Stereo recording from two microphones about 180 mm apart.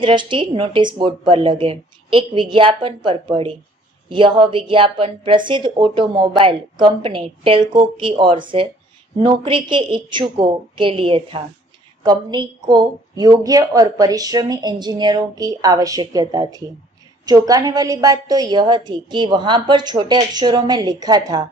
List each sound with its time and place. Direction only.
0.0 s a woman's voice: 25° right (ahead or behind)